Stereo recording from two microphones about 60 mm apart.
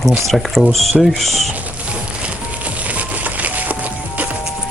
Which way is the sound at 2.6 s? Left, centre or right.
Right.